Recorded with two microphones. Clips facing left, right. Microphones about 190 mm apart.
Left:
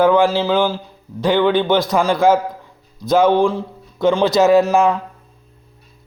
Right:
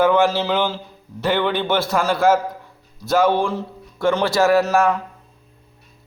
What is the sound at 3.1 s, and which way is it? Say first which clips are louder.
A man's voice: left 4 dB; 20° left (ahead or behind).